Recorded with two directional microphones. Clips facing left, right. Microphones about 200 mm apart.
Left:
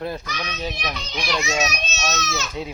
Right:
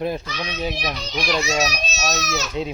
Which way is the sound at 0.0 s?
20° right (ahead or behind).